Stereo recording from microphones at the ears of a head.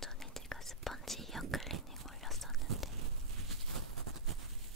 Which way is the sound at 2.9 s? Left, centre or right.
Right.